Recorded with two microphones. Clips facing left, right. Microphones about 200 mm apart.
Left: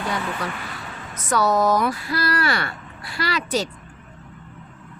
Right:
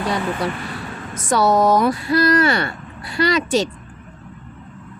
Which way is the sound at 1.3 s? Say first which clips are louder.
Right 4 dB; 30° right (ahead or behind).